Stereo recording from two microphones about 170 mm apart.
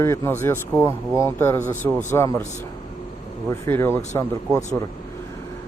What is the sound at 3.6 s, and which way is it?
Speech, 15° left (ahead or behind).